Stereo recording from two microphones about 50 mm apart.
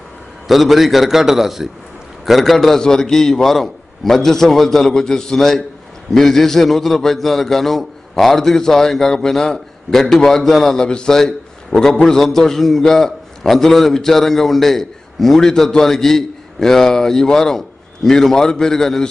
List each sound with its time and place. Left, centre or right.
0.5 s a man's voice: centre